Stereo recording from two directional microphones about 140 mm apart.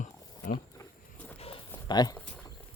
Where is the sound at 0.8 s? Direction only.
10° left (ahead or behind).